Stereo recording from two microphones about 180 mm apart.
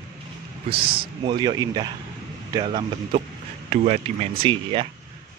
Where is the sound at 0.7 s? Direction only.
30° right (ahead or behind).